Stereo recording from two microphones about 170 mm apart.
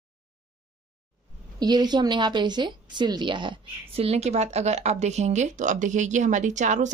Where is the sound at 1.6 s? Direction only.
25° right (ahead or behind).